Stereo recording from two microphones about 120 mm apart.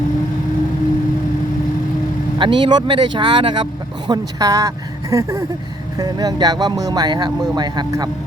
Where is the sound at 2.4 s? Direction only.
40° right (ahead or behind).